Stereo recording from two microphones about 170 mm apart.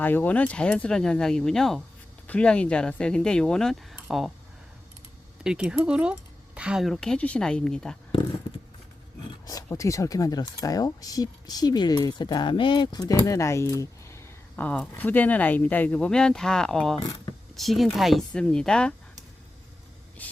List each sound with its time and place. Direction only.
0.0 s speech: 10° left (ahead or behind)
3.9 s a sound: 5° right (ahead or behind)
5.4 s speech: 5° right (ahead or behind)
9.5 s speech: 20° left (ahead or behind)